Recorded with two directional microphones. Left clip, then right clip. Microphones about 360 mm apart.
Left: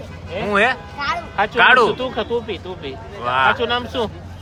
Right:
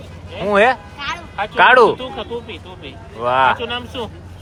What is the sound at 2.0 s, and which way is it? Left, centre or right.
Speech, left.